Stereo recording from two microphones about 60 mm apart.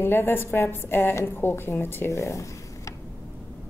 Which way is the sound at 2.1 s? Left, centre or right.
Left.